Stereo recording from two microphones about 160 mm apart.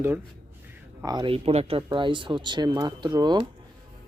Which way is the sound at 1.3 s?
40° right (ahead or behind).